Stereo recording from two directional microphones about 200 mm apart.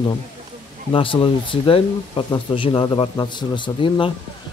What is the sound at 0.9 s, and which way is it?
Speech, 25° left (ahead or behind).